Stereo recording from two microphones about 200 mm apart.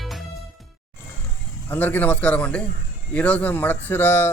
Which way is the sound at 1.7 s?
10° left (ahead or behind).